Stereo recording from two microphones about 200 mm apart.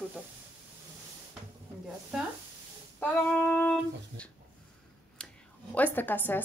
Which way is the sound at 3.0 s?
10° left (ahead or behind).